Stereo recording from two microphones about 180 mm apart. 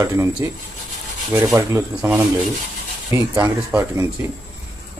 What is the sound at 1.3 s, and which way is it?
A man's voice, 10° right (ahead or behind).